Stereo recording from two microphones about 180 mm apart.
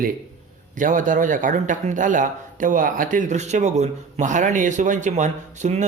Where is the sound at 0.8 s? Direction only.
45° right (ahead or behind).